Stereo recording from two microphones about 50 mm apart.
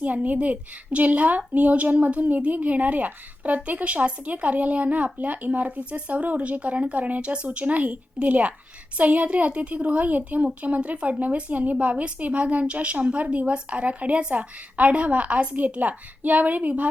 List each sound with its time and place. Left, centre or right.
0.0 s a woman's voice: right